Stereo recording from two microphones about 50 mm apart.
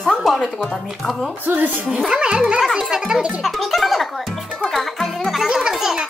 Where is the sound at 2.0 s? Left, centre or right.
Centre.